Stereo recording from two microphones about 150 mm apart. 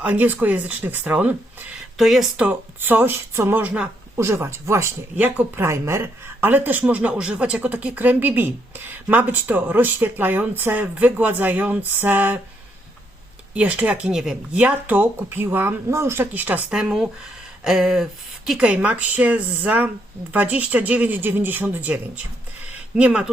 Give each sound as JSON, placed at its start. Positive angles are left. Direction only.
{"t": 0.0, "sound": "speech", "side_deg": -10}
{"t": 13.5, "sound": "speech", "side_deg": -10}